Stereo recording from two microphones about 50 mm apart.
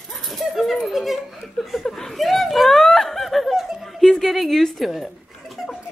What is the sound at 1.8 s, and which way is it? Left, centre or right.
Snicker, centre.